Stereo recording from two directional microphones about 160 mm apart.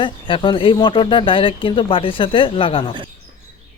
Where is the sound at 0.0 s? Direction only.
30° left (ahead or behind).